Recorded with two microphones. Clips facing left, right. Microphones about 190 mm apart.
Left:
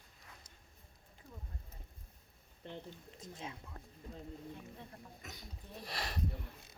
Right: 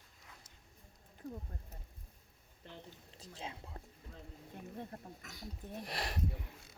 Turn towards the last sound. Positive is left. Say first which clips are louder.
# right 2 dB
turn(degrees=-15)  # may be behind; listen again after turning